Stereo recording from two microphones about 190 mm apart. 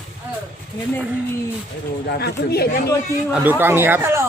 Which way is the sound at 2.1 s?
55° left (ahead or behind).